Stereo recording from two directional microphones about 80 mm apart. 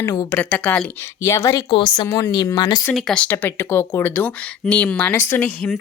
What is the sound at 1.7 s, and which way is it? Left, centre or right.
Speech, left.